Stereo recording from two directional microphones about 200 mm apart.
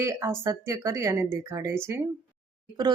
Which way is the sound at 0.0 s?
15° right (ahead or behind).